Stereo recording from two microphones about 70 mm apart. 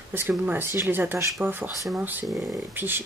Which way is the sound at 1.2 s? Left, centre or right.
Right.